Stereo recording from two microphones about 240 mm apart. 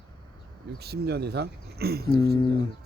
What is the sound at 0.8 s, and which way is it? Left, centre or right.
Speech, right.